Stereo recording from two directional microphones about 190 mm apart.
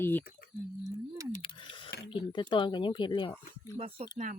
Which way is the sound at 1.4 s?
25° left (ahead or behind).